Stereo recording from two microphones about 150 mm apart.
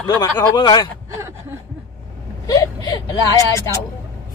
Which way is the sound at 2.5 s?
25° left (ahead or behind).